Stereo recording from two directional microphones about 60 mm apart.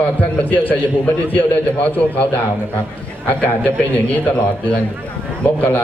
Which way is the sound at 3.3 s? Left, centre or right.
Left.